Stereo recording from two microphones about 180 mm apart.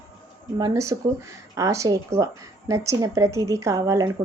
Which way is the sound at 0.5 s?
20° right (ahead or behind).